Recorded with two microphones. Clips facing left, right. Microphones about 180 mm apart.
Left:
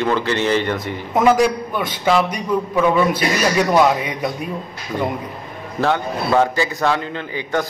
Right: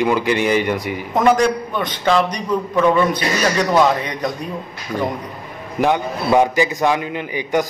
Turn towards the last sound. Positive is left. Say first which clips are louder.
# right 3 dB
turn(degrees=-15)  # may be behind; listen again after turning